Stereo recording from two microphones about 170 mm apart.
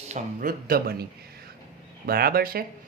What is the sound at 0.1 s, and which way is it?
Speech, 55° right (ahead or behind).